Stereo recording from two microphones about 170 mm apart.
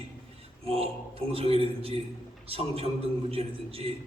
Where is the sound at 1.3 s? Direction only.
35° right (ahead or behind).